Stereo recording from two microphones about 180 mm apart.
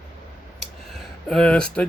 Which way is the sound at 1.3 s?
5° left (ahead or behind).